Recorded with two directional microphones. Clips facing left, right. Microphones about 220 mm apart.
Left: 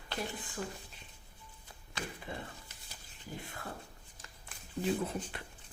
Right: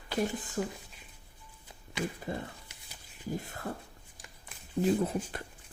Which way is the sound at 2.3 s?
45° right (ahead or behind).